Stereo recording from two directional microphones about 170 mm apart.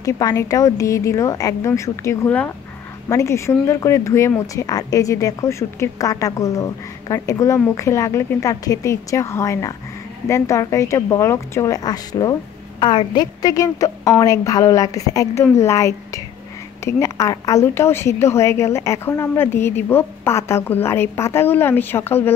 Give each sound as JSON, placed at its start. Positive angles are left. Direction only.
{"t": 0.0, "sound": "a woman's voice", "side_deg": 20}